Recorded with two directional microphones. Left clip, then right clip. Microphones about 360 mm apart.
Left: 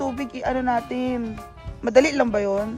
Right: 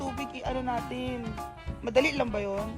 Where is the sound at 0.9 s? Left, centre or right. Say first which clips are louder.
Left 8 dB; left.